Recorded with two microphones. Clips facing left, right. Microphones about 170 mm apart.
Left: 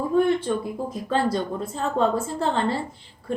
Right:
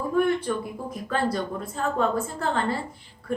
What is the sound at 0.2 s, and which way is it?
Speech, 25° left (ahead or behind).